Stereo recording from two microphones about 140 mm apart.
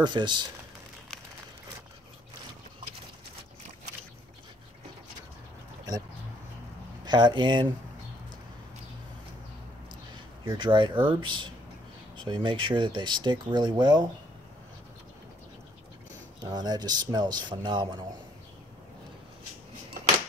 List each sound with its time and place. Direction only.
0.0 s speech: 35° right (ahead or behind)
7.1 s speech: 30° right (ahead or behind)
10.4 s speech: 35° right (ahead or behind)
16.3 s speech: 30° right (ahead or behind)